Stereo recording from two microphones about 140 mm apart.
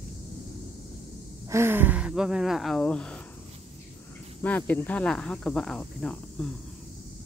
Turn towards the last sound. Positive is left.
turn(degrees=5)  # may be behind; listen again after turning